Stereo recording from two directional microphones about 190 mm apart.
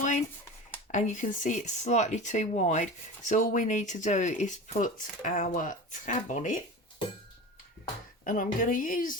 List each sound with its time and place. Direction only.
0.9 s speech: 40° left (ahead or behind)
8.2 s speech: 45° left (ahead or behind)